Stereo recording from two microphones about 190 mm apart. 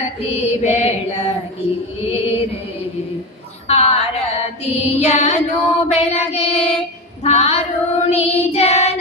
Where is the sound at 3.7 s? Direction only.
35° left (ahead or behind).